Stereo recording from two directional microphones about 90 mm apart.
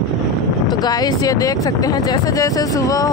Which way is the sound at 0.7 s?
45° left (ahead or behind).